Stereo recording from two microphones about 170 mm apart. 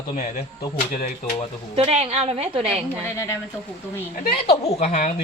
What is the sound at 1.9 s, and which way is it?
Speech, 35° right (ahead or behind).